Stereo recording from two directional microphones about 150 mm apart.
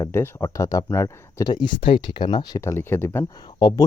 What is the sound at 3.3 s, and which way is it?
Speech, 30° left (ahead or behind).